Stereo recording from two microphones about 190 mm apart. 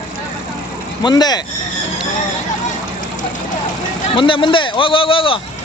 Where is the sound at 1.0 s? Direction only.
20° left (ahead or behind).